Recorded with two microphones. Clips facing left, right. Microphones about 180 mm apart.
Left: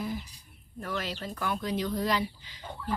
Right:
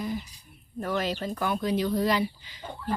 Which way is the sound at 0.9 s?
20° right (ahead or behind).